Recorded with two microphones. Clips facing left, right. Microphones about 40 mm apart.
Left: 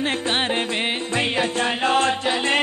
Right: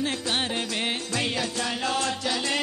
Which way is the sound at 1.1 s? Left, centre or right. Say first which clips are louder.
Left 8 dB; left.